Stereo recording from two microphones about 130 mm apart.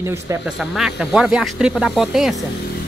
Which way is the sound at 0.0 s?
20° right (ahead or behind).